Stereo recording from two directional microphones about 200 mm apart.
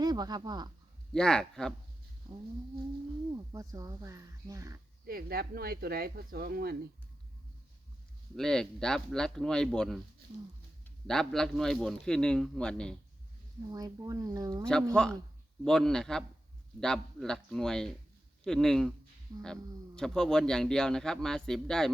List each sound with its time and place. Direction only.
0.0 s speech: 20° right (ahead or behind)
1.1 s a man's voice: 5° left (ahead or behind)
3.5 s speech: 15° right (ahead or behind)
5.0 s speech: 50° right (ahead or behind)
8.4 s a man's voice: 5° left (ahead or behind)
13.7 s speech: 20° right (ahead or behind)
14.9 s a man's voice: 5° left (ahead or behind)
20.0 s a man's voice: 5° left (ahead or behind)